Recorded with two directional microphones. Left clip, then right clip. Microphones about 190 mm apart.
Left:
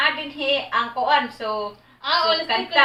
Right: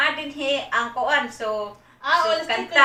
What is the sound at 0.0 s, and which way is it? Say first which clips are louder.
A woman's voice: left 1 dB; centre (ahead or behind).